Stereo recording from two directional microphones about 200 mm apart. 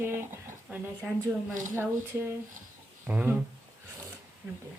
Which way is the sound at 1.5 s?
40° right (ahead or behind).